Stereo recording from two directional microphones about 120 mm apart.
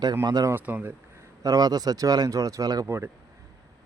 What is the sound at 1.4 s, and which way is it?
Speech, 30° right (ahead or behind).